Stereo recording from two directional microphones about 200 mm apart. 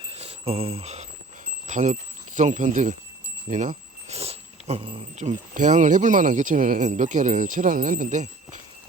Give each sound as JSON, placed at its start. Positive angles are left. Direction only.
{"t": 0.0, "sound": "jingle bell", "side_deg": -30}
{"t": 1.6, "sound": "speech", "side_deg": -40}